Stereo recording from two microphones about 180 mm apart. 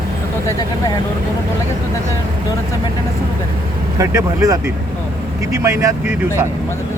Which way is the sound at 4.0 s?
15° right (ahead or behind).